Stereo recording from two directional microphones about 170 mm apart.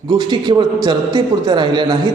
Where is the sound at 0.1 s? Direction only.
25° right (ahead or behind).